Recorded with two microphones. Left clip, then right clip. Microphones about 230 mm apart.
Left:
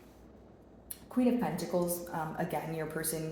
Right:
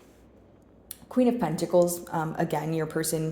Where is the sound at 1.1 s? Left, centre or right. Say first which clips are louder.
Right 6 dB; right.